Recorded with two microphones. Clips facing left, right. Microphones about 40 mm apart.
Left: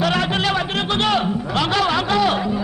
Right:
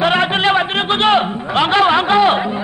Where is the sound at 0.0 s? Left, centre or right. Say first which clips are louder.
Right 5 dB; right.